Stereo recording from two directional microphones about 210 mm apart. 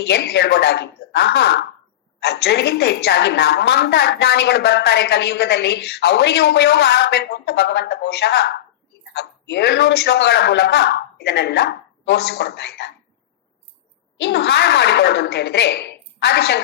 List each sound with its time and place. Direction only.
0.0 s a woman's voice: 50° left (ahead or behind)
14.2 s a woman's voice: 55° left (ahead or behind)